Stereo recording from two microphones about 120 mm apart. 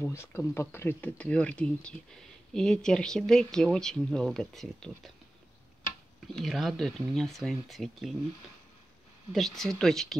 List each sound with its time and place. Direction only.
0.0 s speech: 20° left (ahead or behind); by 5.1 s 5° left (ahead or behind)
6.2 s speech: centre (ahead or behind)
9.3 s speech: centre (ahead or behind)